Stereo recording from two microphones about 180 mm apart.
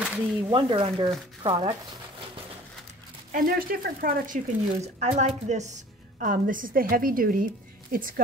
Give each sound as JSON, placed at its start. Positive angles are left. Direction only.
{"t": 0.0, "sound": "speech", "side_deg": -10}
{"t": 0.5, "sound": "speech", "side_deg": -25}
{"t": 3.3, "sound": "a woman's voice", "side_deg": -50}
{"t": 4.8, "sound": "a woman's voice", "side_deg": -40}
{"t": 6.1, "sound": "a woman's voice", "side_deg": -50}